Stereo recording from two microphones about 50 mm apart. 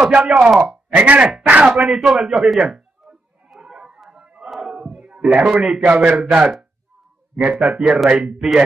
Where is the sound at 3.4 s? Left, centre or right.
Centre.